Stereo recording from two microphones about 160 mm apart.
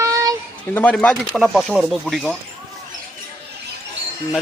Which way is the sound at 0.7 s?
10° left (ahead or behind).